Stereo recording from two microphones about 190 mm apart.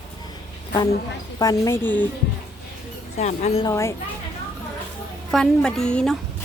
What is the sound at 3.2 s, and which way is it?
Speech, 35° left (ahead or behind).